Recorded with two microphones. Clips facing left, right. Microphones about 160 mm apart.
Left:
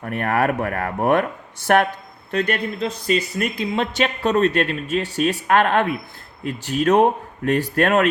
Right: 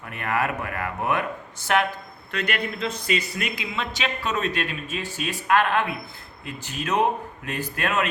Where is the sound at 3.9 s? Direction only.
55° left (ahead or behind).